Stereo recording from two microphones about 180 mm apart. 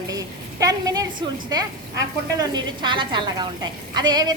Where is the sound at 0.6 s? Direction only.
20° right (ahead or behind).